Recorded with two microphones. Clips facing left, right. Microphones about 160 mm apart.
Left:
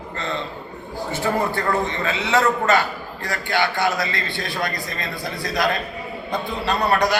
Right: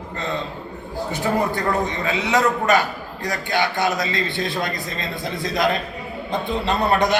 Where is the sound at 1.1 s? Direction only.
15° right (ahead or behind).